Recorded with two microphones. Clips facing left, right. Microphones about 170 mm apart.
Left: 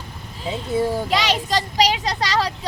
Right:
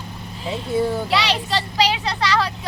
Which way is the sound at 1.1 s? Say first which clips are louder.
Left 1 dB; 45° left (ahead or behind).